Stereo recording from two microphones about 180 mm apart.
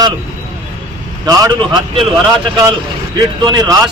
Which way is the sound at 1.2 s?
25° right (ahead or behind).